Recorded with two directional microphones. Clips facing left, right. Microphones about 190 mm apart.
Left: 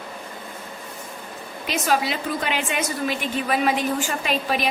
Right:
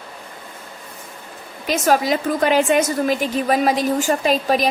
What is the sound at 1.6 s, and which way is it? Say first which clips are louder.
A woman's voice: right 5 dB; 45° right (ahead or behind).